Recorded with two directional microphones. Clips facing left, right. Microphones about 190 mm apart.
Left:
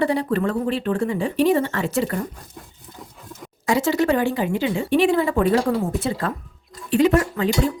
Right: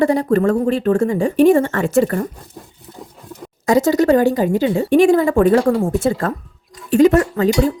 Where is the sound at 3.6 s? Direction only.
40° right (ahead or behind).